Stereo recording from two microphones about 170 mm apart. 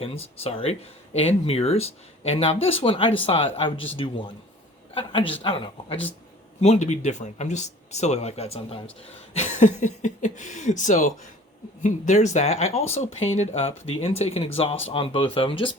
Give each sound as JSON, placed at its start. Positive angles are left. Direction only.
{"t": 0.0, "sound": "speech", "side_deg": 35}
{"t": 4.9, "sound": "speech", "side_deg": 30}